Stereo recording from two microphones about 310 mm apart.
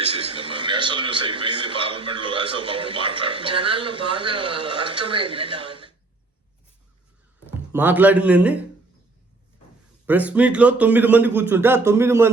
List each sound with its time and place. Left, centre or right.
0.0 s a man's voice: centre
7.7 s a man's voice: centre
10.1 s a man's voice: centre